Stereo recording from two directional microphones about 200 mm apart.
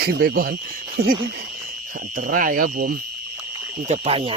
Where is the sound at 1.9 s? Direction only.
45° right (ahead or behind).